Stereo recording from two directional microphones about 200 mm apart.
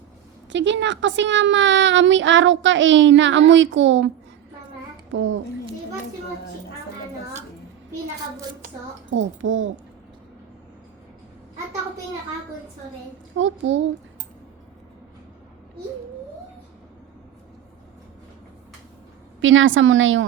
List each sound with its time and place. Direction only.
0.5 s a child's voice: 65° right (ahead or behind)
5.1 s a child's voice: 75° right (ahead or behind)
9.0 s a child's voice: 70° right (ahead or behind)
13.3 s a child's voice: 70° right (ahead or behind)
19.4 s a child's voice: 75° right (ahead or behind)